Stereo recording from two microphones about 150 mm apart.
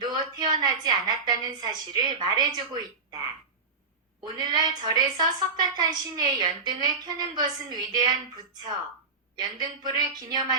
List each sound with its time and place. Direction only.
0.0 s a sound: 30° right (ahead or behind)
0.6 s a woman's voice: 30° right (ahead or behind)
4.4 s a woman's voice: 30° right (ahead or behind)
9.3 s a woman's voice: 25° right (ahead or behind)